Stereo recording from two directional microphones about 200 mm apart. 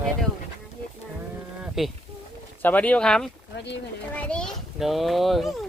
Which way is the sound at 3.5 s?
60° left (ahead or behind).